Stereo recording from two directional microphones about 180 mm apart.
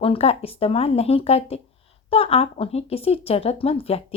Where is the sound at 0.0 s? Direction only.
30° left (ahead or behind).